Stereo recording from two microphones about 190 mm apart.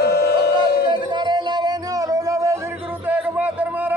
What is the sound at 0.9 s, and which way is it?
Music, 25° right (ahead or behind).